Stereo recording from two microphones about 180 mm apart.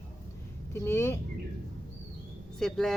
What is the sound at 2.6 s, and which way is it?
Speech, centre (ahead or behind).